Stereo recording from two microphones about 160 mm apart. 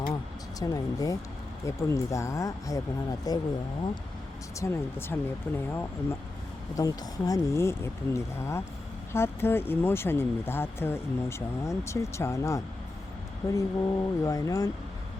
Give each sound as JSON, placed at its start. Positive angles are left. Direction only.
{"t": 0.6, "sound": "speech", "side_deg": 20}
{"t": 4.6, "sound": "speech", "side_deg": 15}